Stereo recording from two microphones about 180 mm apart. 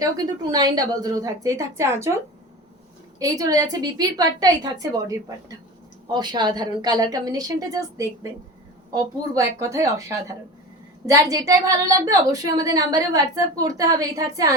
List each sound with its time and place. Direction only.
0.0 s a woman's voice: 20° right (ahead or behind)
3.2 s a woman's voice: 20° right (ahead or behind)
11.0 s a woman's voice: 20° right (ahead or behind)